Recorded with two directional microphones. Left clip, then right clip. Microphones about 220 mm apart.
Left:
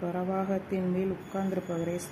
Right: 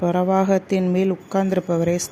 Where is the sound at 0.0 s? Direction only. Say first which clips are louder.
Right 13 dB; 40° right (ahead or behind).